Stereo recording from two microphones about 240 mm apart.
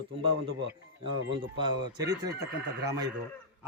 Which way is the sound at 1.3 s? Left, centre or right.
Centre.